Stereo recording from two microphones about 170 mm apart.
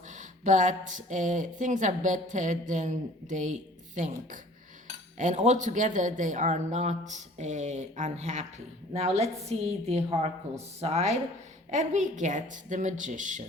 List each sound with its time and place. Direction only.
0.1 s speech: 45° right (ahead or behind)